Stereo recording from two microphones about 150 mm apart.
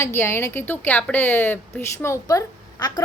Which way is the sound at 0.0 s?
15° left (ahead or behind).